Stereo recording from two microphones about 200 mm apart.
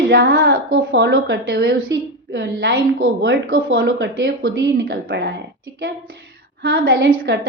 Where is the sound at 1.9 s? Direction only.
60° right (ahead or behind).